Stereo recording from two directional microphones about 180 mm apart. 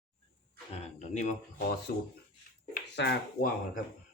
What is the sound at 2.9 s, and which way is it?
Speech, 70° left (ahead or behind).